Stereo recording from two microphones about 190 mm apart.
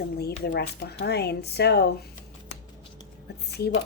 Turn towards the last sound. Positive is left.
turn(degrees=60)  # may be behind; listen again after turning